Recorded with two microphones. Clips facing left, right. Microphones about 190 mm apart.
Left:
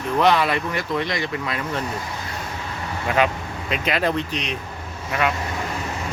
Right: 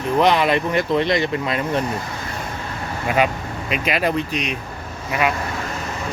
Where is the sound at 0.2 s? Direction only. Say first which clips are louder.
Right 2 dB; 20° right (ahead or behind).